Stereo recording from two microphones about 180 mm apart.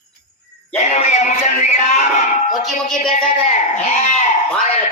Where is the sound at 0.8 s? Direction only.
40° left (ahead or behind).